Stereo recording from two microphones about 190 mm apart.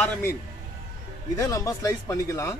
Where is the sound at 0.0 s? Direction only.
10° left (ahead or behind).